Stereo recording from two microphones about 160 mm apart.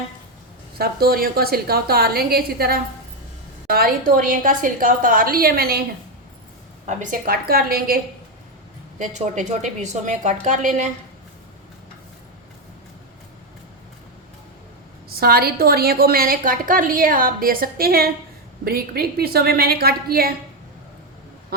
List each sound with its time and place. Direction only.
0.8 s a woman's voice: 70° right (ahead or behind)
6.8 s a woman's voice: 55° right (ahead or behind); by 7.9 s 70° right (ahead or behind)
9.0 s a woman's voice: 50° right (ahead or behind)
15.1 s a woman's voice: 70° right (ahead or behind)